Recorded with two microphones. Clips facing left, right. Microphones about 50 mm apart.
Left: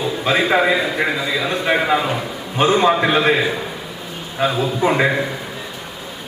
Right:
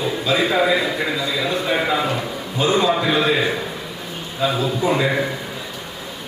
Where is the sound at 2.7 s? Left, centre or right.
Left.